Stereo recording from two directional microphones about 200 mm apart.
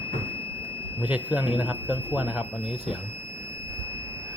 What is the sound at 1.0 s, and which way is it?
Speech, 10° right (ahead or behind).